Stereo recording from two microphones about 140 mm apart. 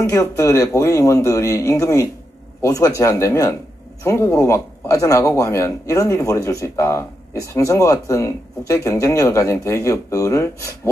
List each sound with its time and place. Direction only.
0.0 s speech: 20° left (ahead or behind)